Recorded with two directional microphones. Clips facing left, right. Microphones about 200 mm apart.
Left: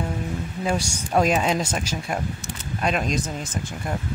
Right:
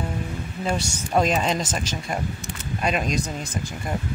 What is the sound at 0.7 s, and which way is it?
Speech, 5° left (ahead or behind).